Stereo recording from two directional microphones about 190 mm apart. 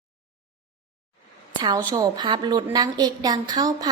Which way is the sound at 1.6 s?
20° right (ahead or behind).